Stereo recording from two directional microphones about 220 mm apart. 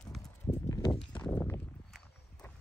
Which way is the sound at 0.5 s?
15° left (ahead or behind).